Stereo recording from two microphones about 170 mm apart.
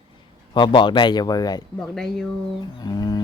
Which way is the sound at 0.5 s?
30° left (ahead or behind).